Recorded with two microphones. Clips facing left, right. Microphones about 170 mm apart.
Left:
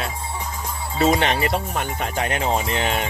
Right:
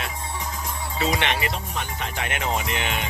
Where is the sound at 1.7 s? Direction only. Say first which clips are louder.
Left 5 dB; 50° left (ahead or behind).